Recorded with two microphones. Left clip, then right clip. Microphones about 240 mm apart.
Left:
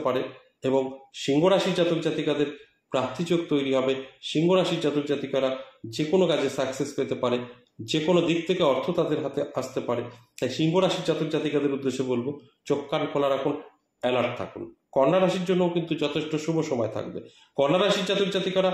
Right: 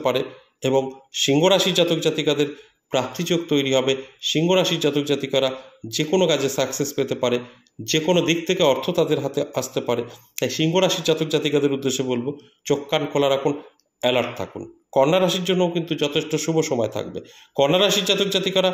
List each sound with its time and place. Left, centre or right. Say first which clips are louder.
0.0 s speech: right 4 dB; right